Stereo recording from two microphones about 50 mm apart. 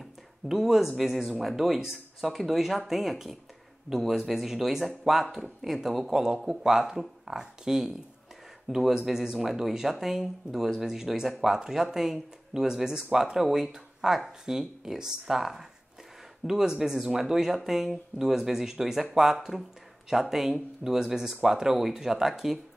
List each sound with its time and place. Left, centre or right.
0.0 s speech: centre
20.1 s speech: centre